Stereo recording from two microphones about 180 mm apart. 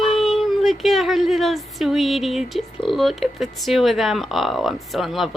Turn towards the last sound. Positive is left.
turn(degrees=0)  # may be behind; listen again after turning